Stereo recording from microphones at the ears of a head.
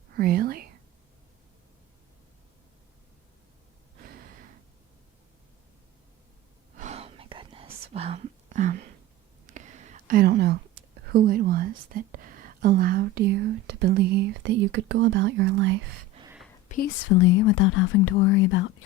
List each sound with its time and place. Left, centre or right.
0.1 s speech: right
3.9 s gasp: right
6.7 s whispering: right
9.5 s a sound: right
16.6 s speech: left